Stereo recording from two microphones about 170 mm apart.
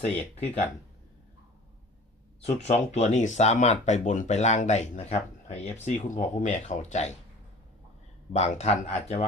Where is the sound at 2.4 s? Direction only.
40° left (ahead or behind).